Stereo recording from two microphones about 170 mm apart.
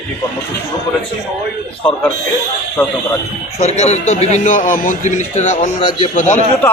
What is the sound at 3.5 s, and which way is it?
A man's voice, 40° left (ahead or behind).